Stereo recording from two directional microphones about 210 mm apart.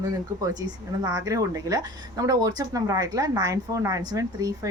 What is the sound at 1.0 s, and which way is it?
Speech, 15° right (ahead or behind).